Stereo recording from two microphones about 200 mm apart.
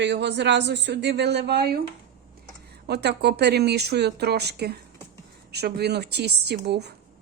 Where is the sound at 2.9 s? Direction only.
55° right (ahead or behind).